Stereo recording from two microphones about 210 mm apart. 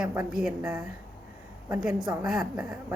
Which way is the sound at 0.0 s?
5° right (ahead or behind).